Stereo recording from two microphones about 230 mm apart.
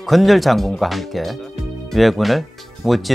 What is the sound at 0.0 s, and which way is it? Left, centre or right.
Speech, centre.